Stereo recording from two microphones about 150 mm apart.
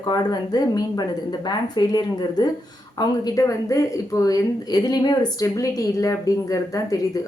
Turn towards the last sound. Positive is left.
turn(degrees=20)  # may be behind; listen again after turning